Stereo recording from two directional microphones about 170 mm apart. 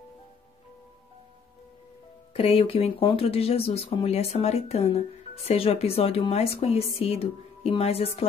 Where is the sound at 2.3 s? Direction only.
35° left (ahead or behind).